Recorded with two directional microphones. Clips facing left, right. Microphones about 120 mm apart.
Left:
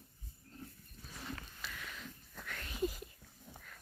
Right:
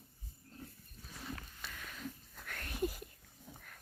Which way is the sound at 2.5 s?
55° right (ahead or behind).